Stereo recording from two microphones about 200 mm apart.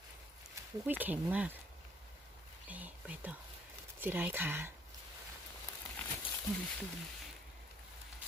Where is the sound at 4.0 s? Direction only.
10° right (ahead or behind).